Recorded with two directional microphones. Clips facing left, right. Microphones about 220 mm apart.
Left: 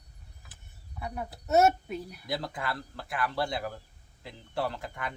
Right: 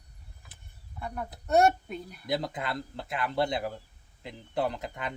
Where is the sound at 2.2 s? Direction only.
20° right (ahead or behind).